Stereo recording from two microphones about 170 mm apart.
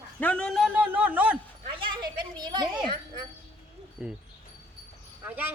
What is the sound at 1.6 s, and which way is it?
Dog, 30° right (ahead or behind).